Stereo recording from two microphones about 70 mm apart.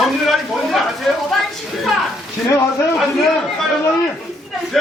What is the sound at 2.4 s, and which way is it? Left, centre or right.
Speech, left.